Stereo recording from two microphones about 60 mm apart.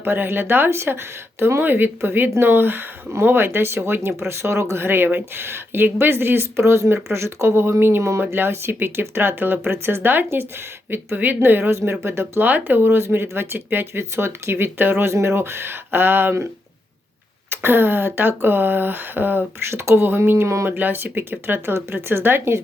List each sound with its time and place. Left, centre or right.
0.0 s speech: right
12.4 s speech: right
17.5 s speech: right
19.7 s speech: right